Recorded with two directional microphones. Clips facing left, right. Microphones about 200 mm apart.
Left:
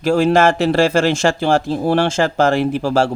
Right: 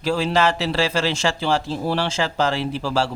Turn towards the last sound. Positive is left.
turn(degrees=50)  # may be behind; listen again after turning